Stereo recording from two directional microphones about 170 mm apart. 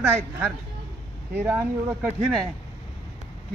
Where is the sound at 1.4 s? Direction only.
10° right (ahead or behind).